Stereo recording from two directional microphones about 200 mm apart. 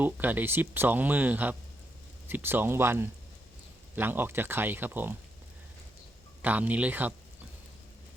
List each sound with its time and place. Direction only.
0.0 s speech: 10° right (ahead or behind)
6.4 s speech: 10° right (ahead or behind)